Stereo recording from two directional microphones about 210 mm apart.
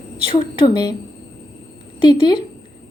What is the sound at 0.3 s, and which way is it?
Speech, 25° left (ahead or behind).